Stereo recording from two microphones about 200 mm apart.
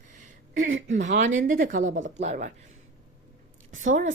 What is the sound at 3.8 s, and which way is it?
Speech, 40° right (ahead or behind).